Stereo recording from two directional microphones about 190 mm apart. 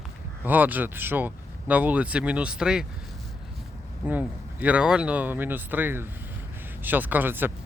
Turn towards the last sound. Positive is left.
turn(degrees=-10)  # may be behind; listen again after turning